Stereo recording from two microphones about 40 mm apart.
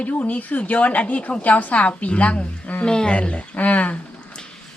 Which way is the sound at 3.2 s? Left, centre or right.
Left.